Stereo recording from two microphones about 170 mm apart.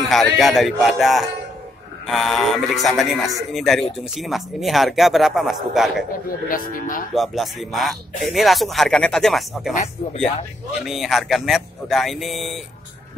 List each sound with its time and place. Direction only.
0.1 s speech: centre (ahead or behind)
6.5 s speech: 55° left (ahead or behind)
7.2 s speech: centre (ahead or behind)
9.8 s speech: 40° left (ahead or behind)
10.9 s speech: centre (ahead or behind)